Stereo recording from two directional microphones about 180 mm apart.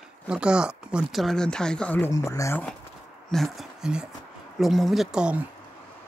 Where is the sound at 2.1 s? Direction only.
20° left (ahead or behind).